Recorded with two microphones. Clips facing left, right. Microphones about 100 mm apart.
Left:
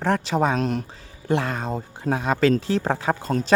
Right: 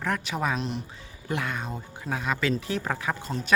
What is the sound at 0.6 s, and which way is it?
Speech, 45° left (ahead or behind).